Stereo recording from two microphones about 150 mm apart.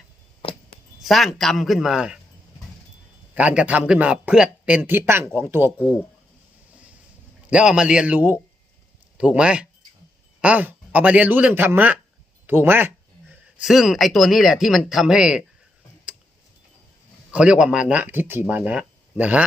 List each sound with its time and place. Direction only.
1.0 s speech: centre (ahead or behind)
3.3 s speech: 10° right (ahead or behind)
6.7 s boat: 10° right (ahead or behind)
7.5 s speech: 5° right (ahead or behind)
13.6 s speech: centre (ahead or behind)
17.3 s speech: 5° right (ahead or behind)